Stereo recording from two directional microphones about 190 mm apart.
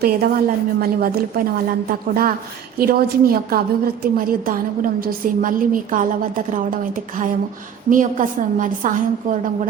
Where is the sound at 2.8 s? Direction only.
50° right (ahead or behind).